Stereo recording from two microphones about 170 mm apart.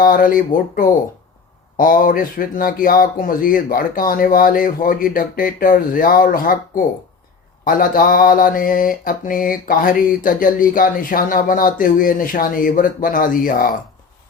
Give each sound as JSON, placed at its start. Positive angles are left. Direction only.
{"t": 0.0, "sound": "mantra", "side_deg": 55}